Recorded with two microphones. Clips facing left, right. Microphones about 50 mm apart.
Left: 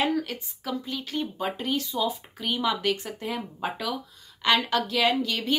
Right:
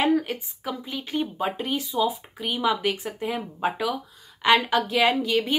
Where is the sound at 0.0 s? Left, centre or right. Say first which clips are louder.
Right 4 dB; centre.